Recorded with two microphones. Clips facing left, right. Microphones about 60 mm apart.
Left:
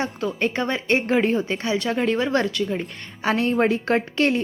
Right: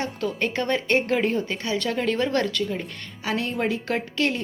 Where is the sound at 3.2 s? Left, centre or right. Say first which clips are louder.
Left 6 dB; left.